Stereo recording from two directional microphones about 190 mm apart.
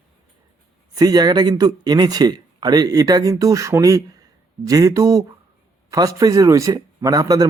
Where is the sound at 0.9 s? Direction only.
20° right (ahead or behind).